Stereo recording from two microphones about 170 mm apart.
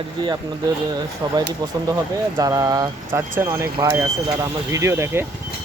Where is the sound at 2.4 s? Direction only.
20° right (ahead or behind).